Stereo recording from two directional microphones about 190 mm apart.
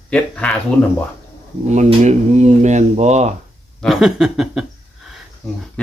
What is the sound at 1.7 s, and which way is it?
Speech, 35° right (ahead or behind).